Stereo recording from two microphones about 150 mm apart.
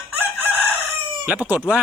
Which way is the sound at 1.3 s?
10° right (ahead or behind).